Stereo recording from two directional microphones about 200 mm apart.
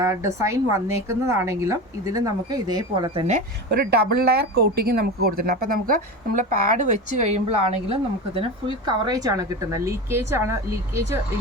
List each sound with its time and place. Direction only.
0.0 s a woman's voice: 15° right (ahead or behind)
3.7 s a woman's voice: 55° right (ahead or behind); by 11.2 s 15° right (ahead or behind)